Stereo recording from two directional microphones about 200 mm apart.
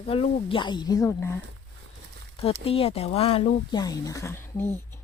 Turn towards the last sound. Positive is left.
turn(degrees=10)  # may be behind; listen again after turning